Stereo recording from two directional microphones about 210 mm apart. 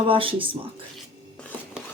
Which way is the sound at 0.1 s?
25° right (ahead or behind).